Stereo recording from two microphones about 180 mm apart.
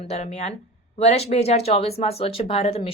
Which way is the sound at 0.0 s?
35° left (ahead or behind).